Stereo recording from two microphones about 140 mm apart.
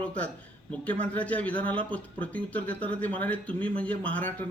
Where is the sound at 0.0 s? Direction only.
10° left (ahead or behind).